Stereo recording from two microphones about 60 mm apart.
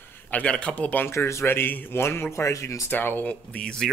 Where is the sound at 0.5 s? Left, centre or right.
Left.